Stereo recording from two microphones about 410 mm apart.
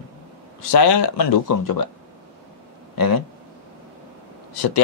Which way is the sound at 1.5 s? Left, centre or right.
Left.